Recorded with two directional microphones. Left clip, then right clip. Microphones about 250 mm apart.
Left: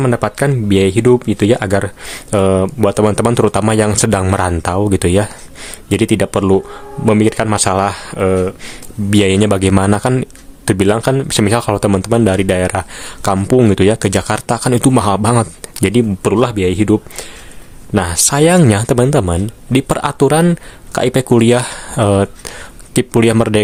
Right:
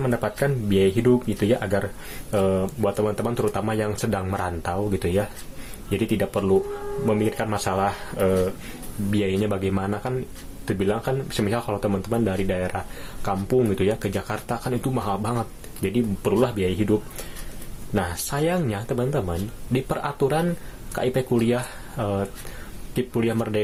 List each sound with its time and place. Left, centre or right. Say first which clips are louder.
0.0 s speech: left 9 dB; left
17.9 s speech: left 12 dB; left